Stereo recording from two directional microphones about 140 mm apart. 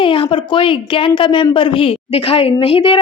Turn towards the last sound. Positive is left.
turn(degrees=40)  # may be behind; listen again after turning